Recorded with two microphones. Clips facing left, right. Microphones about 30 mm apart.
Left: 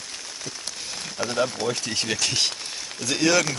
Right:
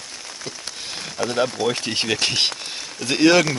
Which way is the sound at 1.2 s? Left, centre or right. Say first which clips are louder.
Right 4 dB; centre.